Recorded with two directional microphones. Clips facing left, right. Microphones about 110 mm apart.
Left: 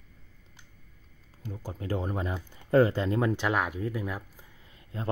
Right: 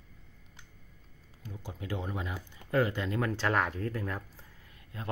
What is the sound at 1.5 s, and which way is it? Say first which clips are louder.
Speech: left 5 dB; 40° left (ahead or behind).